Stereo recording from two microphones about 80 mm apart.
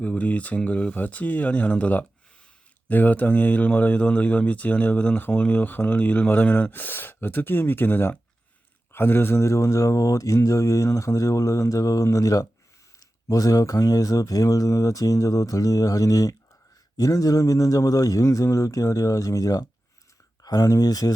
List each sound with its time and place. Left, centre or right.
0.0 s speech: centre; by 21.1 s left